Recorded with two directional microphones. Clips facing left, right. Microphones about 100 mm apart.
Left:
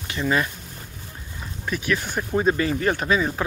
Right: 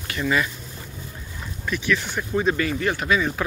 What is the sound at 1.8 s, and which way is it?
Speech, 45° left (ahead or behind).